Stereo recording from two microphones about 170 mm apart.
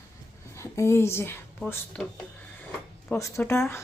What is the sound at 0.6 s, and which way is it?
A woman's voice, 15° left (ahead or behind).